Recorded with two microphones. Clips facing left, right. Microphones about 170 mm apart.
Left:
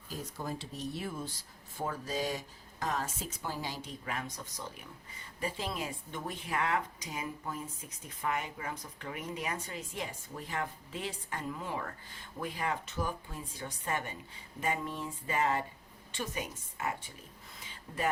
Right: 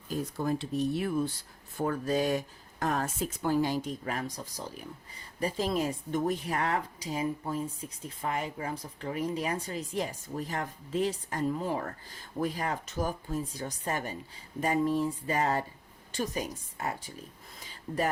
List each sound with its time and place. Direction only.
0.1 s speech: 60° right (ahead or behind); by 18.1 s 40° right (ahead or behind)